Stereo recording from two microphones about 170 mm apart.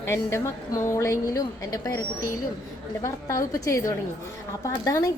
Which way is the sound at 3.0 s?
20° left (ahead or behind).